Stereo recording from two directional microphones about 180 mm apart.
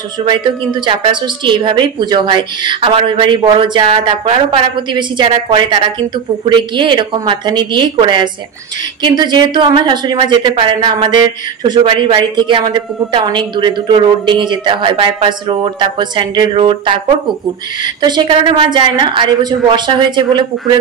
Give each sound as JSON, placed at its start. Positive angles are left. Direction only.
{"t": 0.2, "sound": "a woman's voice", "side_deg": -25}
{"t": 18.0, "sound": "a woman's voice", "side_deg": -25}